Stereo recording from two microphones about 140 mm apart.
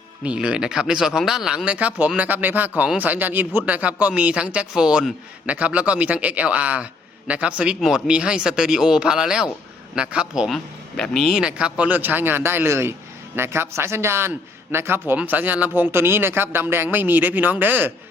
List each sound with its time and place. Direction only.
0.3 s a man's voice: 5° right (ahead or behind)